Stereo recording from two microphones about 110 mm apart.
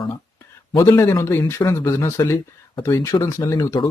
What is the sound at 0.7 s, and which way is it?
Speech, 25° left (ahead or behind).